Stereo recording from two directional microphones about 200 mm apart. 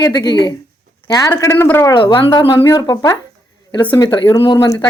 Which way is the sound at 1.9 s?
25° left (ahead or behind).